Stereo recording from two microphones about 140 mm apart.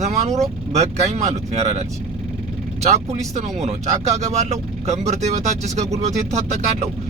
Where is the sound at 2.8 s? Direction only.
55° right (ahead or behind).